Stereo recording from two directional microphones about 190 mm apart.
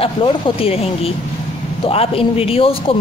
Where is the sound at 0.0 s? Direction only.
30° left (ahead or behind).